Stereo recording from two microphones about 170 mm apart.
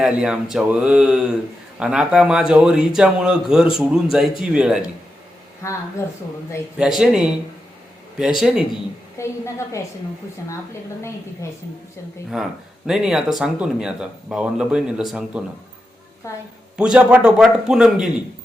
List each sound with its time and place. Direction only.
0.0 s speech: 5° right (ahead or behind)
6.7 s speech: 5° right (ahead or behind)
8.4 s speech: 5° right (ahead or behind)
9.1 s a woman's voice: 15° left (ahead or behind)
12.3 s speech: 5° right (ahead or behind)
16.7 s speech: 5° right (ahead or behind)